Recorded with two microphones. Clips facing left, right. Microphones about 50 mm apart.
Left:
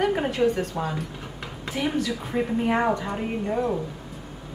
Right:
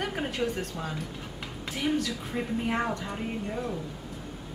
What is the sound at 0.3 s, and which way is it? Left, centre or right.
Speech, centre.